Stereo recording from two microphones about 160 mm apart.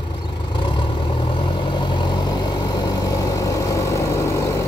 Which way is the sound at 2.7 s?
25° left (ahead or behind).